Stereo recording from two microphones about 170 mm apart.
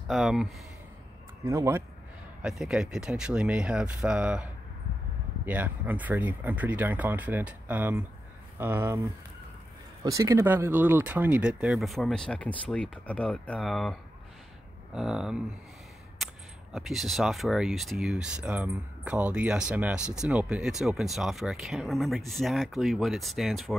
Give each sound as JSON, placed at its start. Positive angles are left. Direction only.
{"t": 0.1, "sound": "speech", "side_deg": -5}
{"t": 1.4, "sound": "speech", "side_deg": -20}
{"t": 2.4, "sound": "speech", "side_deg": -5}
{"t": 10.0, "sound": "speech", "side_deg": -20}
{"t": 15.0, "sound": "speech", "side_deg": -5}
{"t": 16.2, "sound": "a sound", "side_deg": 0}
{"t": 16.7, "sound": "speech", "side_deg": 0}